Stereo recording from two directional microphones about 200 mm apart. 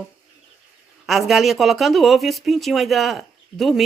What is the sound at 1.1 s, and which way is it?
Speech, centre (ahead or behind).